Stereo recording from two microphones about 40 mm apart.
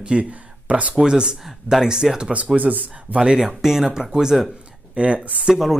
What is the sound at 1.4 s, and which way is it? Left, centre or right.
Speech, centre.